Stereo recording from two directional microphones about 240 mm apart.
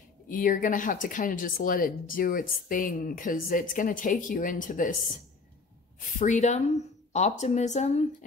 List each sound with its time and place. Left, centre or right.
0.3 s speech: left
5.9 s speech: left